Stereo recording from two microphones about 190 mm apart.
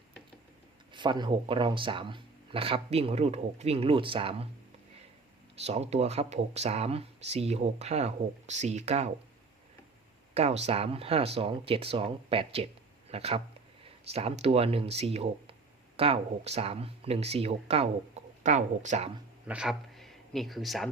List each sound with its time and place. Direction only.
0.9 s speech: 25° right (ahead or behind)
5.6 s speech: 35° right (ahead or behind)
10.3 s speech: 35° right (ahead or behind)
19.5 s speech: 5° right (ahead or behind)